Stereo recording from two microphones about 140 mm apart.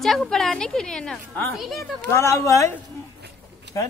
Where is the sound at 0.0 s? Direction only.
Centre (ahead or behind).